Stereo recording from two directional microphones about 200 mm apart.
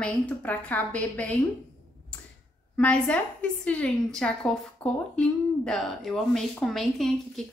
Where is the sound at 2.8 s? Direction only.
5° left (ahead or behind).